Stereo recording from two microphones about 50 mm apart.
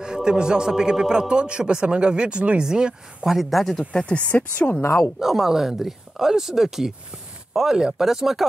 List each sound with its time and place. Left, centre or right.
0.0 s a man's voice: centre
3.3 s speech: centre
3.9 s speech: left
5.2 s a man's voice: centre